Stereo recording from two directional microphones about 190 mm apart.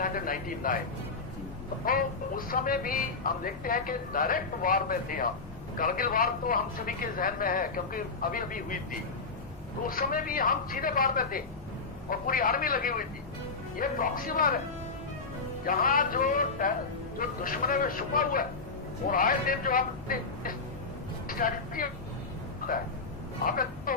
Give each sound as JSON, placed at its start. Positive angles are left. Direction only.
{"t": 0.0, "sound": "speech", "side_deg": 45}
{"t": 1.8, "sound": "speech", "side_deg": 50}
{"t": 9.9, "sound": "speech", "side_deg": 45}
{"t": 15.6, "sound": "speech", "side_deg": 45}
{"t": 23.5, "sound": "speech", "side_deg": 50}